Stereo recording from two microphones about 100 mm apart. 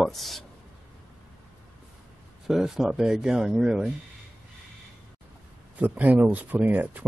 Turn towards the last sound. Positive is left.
turn(degrees=-15)  # may be behind; listen again after turning